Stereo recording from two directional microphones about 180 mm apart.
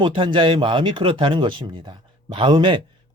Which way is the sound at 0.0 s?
25° right (ahead or behind).